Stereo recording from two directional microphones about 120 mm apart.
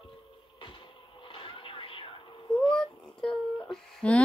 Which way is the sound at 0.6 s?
40° left (ahead or behind).